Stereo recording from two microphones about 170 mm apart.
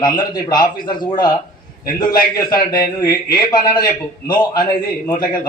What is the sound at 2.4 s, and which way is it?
A man's voice, 20° left (ahead or behind).